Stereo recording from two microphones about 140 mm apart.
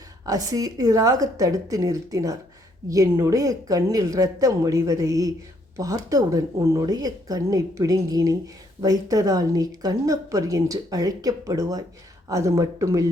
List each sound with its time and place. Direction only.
0.3 s speech: 25° right (ahead or behind)